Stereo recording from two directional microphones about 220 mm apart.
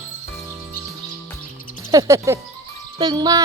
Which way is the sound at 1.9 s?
15° right (ahead or behind).